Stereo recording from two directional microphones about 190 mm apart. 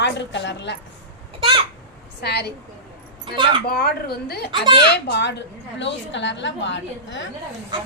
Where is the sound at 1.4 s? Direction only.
30° right (ahead or behind).